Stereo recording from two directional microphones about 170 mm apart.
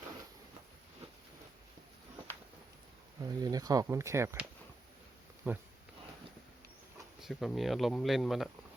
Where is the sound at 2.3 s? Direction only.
10° left (ahead or behind).